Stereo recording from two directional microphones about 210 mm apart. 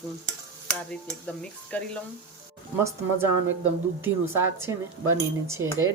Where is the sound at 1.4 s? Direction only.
5° left (ahead or behind).